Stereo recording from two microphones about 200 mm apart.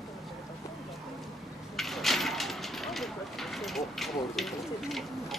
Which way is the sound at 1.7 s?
Centre (ahead or behind).